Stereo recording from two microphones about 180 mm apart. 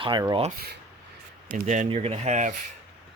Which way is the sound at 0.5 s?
60° right (ahead or behind).